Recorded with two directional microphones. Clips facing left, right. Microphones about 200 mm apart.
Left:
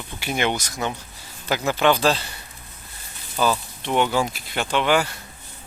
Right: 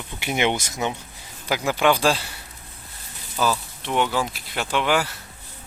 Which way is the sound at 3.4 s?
Centre (ahead or behind).